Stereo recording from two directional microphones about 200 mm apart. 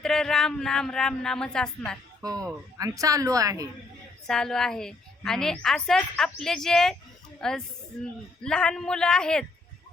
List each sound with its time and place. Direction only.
0.0 s a woman's voice: 5° left (ahead or behind)
2.2 s a woman's voice: 20° right (ahead or behind)
4.3 s a woman's voice: 5° left (ahead or behind)